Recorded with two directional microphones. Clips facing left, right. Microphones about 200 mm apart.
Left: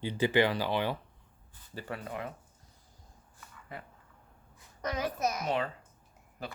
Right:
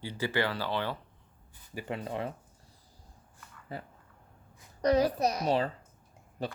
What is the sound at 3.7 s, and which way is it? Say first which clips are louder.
A child's voice: right 4 dB; 30° right (ahead or behind).